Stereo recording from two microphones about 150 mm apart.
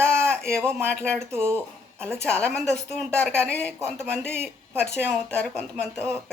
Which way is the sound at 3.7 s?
15° right (ahead or behind).